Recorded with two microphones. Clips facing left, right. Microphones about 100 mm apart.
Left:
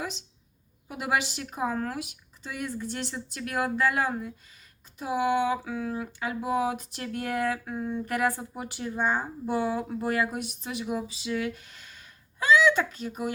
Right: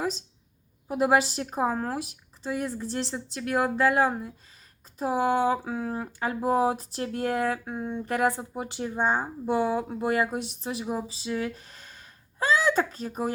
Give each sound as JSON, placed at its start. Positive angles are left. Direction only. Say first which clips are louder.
{"t": 0.9, "sound": "speech", "louder": "right 6 dB", "side_deg": -35}